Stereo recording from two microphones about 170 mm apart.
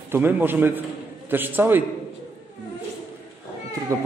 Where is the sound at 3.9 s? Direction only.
20° right (ahead or behind).